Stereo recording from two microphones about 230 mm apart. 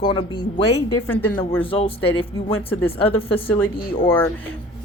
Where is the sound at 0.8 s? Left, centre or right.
Centre.